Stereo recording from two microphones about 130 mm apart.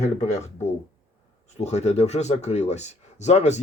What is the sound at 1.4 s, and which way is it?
Speech, 60° left (ahead or behind).